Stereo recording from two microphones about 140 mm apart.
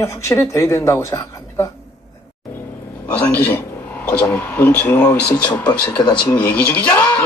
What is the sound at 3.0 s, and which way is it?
Speech, 10° left (ahead or behind).